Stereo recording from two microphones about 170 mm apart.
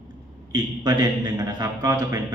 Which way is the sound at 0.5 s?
25° right (ahead or behind).